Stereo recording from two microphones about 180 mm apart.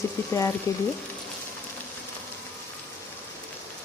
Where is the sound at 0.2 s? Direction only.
10° left (ahead or behind).